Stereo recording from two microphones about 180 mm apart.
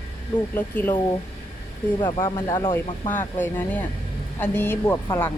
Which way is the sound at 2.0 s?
25° left (ahead or behind).